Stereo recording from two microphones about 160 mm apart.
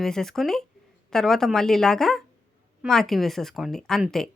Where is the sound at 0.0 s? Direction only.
5° left (ahead or behind).